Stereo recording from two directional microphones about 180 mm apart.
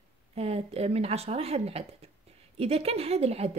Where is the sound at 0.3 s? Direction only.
35° right (ahead or behind).